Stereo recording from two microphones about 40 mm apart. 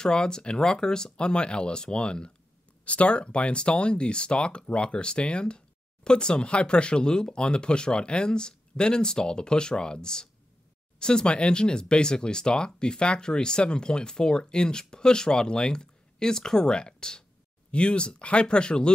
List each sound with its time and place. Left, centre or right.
0.0 s speech: centre
2.8 s speech: left